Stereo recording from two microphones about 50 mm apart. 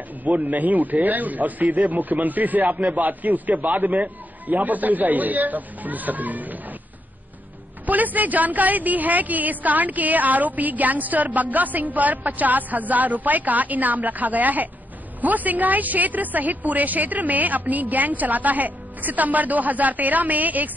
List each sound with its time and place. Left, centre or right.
0.2 s a woman's voice: right
7.8 s a woman's voice: right